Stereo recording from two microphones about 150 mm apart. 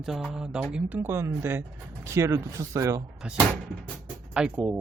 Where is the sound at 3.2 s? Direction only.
5° right (ahead or behind).